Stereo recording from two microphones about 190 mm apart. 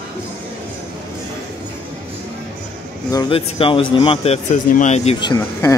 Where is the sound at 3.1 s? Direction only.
25° left (ahead or behind).